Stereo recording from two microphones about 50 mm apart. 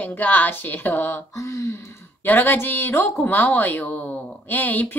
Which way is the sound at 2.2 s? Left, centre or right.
Left.